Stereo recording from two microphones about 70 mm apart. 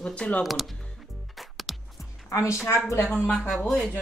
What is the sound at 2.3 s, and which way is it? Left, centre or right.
Speech, left.